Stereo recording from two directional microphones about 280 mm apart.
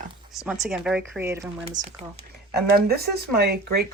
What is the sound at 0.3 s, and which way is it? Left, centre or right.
Speech, centre.